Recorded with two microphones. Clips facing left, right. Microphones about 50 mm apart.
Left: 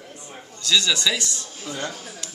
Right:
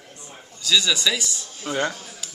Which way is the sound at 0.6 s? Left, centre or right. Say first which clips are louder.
Even; centre.